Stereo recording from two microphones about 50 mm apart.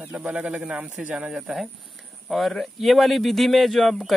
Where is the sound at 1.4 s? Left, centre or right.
Centre.